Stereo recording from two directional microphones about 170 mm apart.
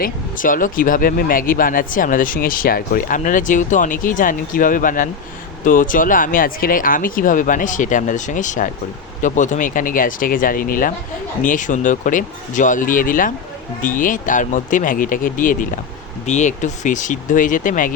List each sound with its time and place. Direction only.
0.0 s speech: 50° left (ahead or behind)